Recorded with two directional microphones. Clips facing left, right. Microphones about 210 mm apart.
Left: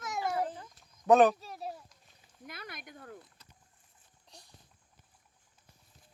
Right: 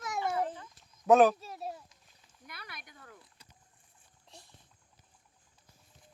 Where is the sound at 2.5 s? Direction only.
50° left (ahead or behind).